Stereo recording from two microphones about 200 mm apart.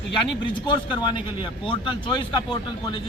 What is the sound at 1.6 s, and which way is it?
Speech, 25° left (ahead or behind).